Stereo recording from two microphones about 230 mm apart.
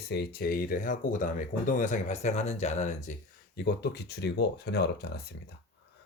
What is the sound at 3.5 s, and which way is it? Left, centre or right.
Speech, left.